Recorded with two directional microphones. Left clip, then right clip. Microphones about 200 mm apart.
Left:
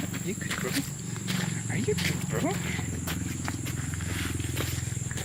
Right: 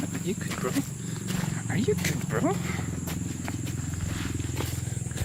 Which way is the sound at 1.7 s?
20° right (ahead or behind).